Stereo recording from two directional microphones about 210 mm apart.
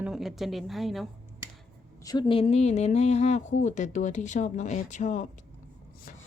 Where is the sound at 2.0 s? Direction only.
20° left (ahead or behind).